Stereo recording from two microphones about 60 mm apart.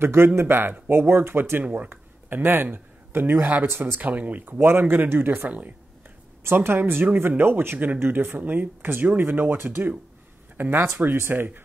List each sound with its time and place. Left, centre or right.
0.0 s speech: right
5.5 s speech: right
6.4 s speech: right